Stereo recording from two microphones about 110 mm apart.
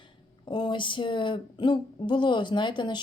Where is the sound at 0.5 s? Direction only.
45° left (ahead or behind).